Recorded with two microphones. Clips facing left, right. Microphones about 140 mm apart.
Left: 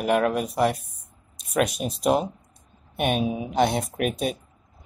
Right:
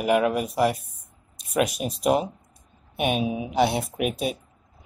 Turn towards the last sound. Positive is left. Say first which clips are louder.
# even
turn(degrees=-5)  # may be behind; listen again after turning